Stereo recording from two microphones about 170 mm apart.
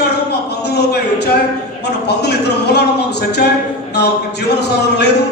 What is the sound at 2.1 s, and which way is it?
A man's voice, 75° left (ahead or behind).